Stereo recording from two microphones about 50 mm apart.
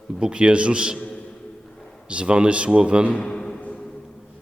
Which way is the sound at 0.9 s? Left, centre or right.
Left.